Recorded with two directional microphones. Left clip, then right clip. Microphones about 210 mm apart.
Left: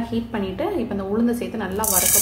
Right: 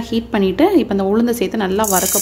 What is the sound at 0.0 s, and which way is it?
A woman's voice, 50° right (ahead or behind).